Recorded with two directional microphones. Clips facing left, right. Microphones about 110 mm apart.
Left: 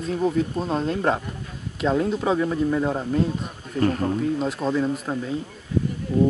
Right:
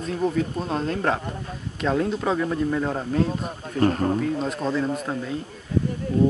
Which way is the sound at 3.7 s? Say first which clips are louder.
Right 1 dB; 40° right (ahead or behind).